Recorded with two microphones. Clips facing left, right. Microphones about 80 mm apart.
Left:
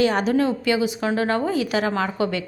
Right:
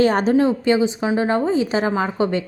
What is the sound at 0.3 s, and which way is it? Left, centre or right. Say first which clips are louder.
Speech: right 4 dB; right.